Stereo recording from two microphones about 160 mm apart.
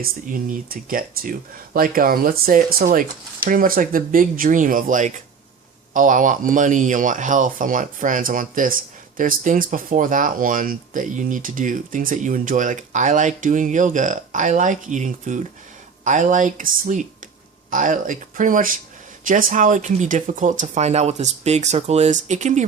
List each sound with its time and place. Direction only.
0.0 s speech: 60° right (ahead or behind)